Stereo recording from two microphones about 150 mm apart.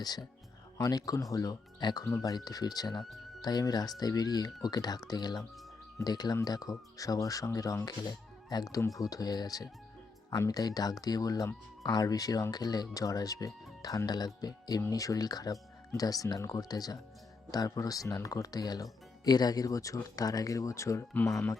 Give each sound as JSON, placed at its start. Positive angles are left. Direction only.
{"t": 0.0, "sound": "speech", "side_deg": 25}